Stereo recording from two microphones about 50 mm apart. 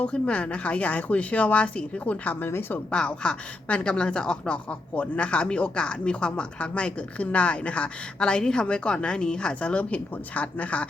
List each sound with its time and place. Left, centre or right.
0.0 s speech: left
2.5 s a woman's voice: left
2.9 s speech: centre